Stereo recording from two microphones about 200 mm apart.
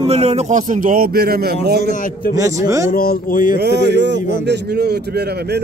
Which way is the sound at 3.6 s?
55° right (ahead or behind).